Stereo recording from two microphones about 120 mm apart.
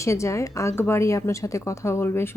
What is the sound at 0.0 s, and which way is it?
A woman's voice, 25° left (ahead or behind).